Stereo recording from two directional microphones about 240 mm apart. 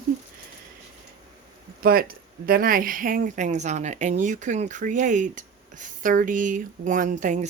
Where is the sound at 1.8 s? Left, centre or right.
Right.